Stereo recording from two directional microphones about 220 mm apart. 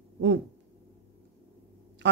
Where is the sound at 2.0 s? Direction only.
55° right (ahead or behind).